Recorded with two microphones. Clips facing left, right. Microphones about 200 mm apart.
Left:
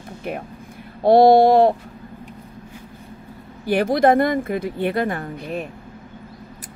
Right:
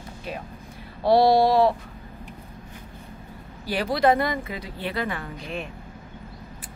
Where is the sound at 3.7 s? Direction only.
50° left (ahead or behind).